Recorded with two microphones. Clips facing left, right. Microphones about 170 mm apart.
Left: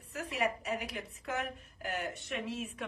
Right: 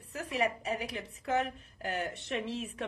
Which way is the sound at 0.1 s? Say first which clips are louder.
Right 2 dB; 30° right (ahead or behind).